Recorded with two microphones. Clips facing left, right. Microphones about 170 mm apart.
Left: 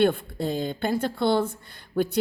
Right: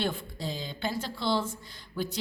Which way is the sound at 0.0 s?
55° left (ahead or behind).